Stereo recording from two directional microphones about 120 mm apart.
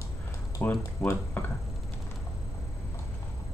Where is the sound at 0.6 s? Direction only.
20° left (ahead or behind).